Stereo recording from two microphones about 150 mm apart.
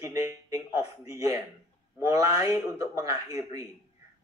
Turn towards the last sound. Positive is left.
turn(degrees=-25)  # may be behind; listen again after turning